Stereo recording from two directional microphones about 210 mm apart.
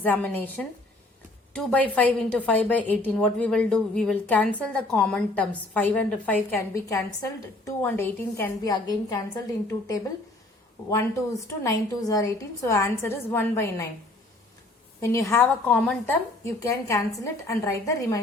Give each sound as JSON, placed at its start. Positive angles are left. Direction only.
{"t": 0.0, "sound": "a woman's voice", "side_deg": 10}
{"t": 10.8, "sound": "a woman's voice", "side_deg": 15}
{"t": 15.0, "sound": "a woman's voice", "side_deg": 15}